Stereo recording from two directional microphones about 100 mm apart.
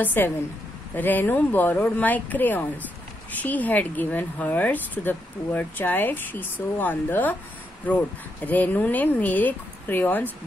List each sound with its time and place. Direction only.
0.0 s a woman's voice: 20° left (ahead or behind)